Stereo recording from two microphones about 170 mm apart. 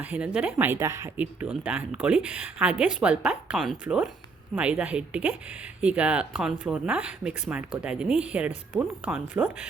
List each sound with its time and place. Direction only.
0.0 s a woman's voice: 10° right (ahead or behind)